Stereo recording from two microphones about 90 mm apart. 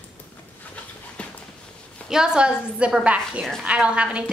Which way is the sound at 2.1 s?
10° right (ahead or behind).